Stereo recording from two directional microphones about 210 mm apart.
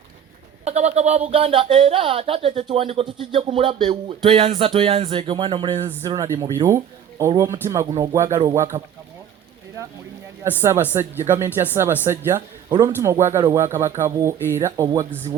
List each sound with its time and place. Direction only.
0.6 s speech: 30° right (ahead or behind)
10.9 s speech: 10° right (ahead or behind)